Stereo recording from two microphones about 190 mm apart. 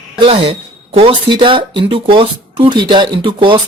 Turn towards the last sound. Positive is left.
turn(degrees=-25)  # may be behind; listen again after turning